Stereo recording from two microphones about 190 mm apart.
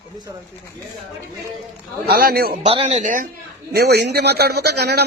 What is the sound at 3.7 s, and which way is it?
A man's voice, 60° right (ahead or behind).